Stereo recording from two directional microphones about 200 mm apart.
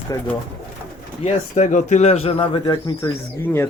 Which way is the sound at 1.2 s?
35° left (ahead or behind).